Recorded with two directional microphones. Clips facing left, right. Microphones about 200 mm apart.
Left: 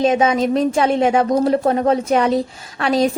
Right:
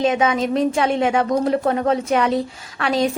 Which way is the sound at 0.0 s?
35° left (ahead or behind).